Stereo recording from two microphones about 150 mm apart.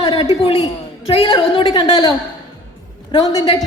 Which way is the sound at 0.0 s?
40° left (ahead or behind).